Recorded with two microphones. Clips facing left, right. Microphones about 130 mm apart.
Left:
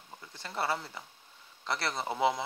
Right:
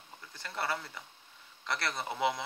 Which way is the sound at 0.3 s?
25° left (ahead or behind).